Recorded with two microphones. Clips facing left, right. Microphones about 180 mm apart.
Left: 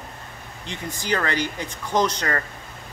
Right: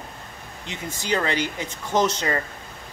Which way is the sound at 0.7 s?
20° right (ahead or behind).